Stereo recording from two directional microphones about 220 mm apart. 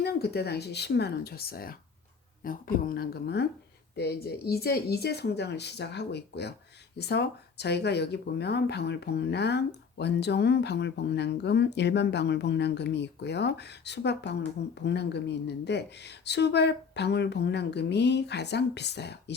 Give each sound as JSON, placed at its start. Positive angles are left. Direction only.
{"t": 0.0, "sound": "speech", "side_deg": 45}